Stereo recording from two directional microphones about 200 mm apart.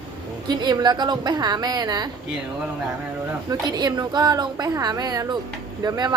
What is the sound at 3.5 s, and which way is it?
A woman's voice, 20° right (ahead or behind).